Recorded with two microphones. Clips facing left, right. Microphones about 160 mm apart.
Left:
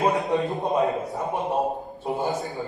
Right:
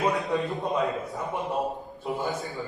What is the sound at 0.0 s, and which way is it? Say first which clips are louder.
A man's voice: left 3 dB; 25° left (ahead or behind).